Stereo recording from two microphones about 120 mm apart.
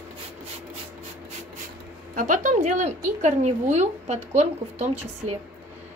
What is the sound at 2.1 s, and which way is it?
A woman's voice, 90° right.